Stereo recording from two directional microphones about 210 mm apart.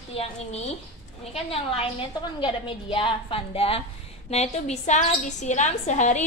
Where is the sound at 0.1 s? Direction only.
30° left (ahead or behind).